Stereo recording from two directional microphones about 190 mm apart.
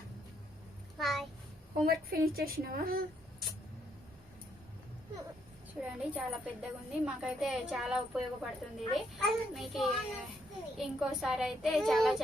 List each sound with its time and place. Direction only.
0.9 s a sound: centre (ahead or behind)
1.8 s a woman's voice: 50° right (ahead or behind)
5.8 s speech: 5° right (ahead or behind)